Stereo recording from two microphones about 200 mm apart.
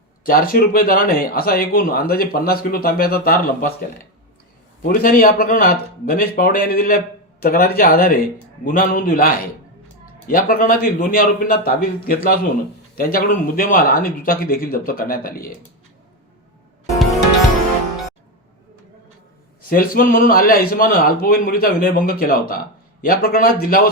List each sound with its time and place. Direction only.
0.3 s a man's voice: 45° left (ahead or behind)
19.6 s a man's voice: 45° left (ahead or behind)